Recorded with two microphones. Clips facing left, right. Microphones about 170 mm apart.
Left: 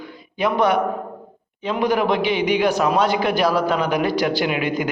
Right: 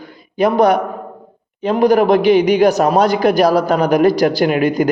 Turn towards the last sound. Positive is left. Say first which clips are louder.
# right 7 dB
turn(degrees=-40)  # may be behind; listen again after turning